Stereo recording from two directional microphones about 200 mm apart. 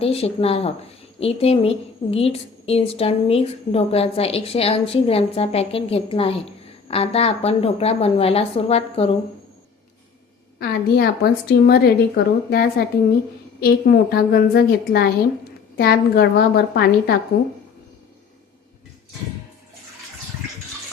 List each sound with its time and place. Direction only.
0.0 s a woman's voice: 30° left (ahead or behind)
10.6 s a woman's voice: 50° left (ahead or behind)